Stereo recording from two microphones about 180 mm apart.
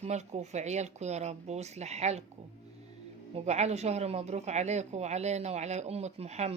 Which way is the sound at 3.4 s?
35° right (ahead or behind).